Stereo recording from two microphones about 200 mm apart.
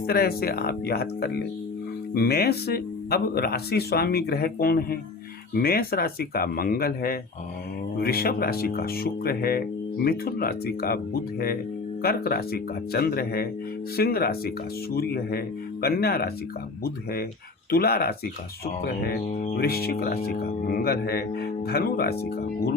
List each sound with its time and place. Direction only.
0.1 s speech: 50° left (ahead or behind)
19.3 s speech: 35° left (ahead or behind)
19.5 s speech: 50° left (ahead or behind)